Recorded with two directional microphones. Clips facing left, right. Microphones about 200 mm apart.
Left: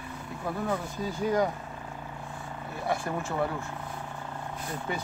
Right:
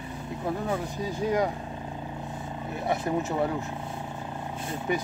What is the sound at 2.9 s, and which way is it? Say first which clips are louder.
Speech: right 4 dB; 20° right (ahead or behind).